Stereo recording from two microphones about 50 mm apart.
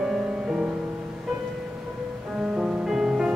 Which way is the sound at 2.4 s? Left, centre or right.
Centre.